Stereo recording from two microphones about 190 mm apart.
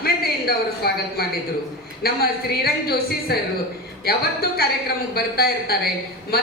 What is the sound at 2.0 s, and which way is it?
A woman's voice, 55° left (ahead or behind).